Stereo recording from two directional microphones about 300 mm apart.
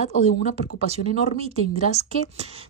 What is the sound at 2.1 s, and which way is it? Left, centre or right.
Speech, centre.